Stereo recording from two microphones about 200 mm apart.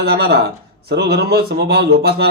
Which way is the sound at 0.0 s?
55° right (ahead or behind).